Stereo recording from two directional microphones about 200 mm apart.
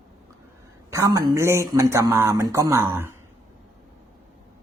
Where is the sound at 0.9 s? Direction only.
15° right (ahead or behind).